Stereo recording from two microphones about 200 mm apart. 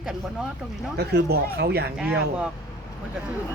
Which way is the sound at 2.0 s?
5° right (ahead or behind).